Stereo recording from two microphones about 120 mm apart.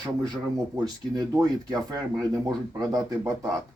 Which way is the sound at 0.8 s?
30° right (ahead or behind).